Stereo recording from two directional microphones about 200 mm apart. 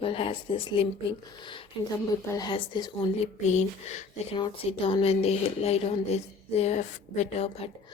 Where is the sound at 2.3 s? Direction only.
20° left (ahead or behind).